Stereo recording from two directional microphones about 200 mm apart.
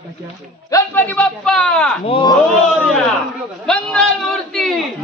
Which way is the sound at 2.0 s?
25° left (ahead or behind).